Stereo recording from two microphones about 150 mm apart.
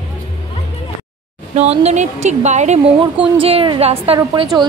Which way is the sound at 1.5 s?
45° right (ahead or behind).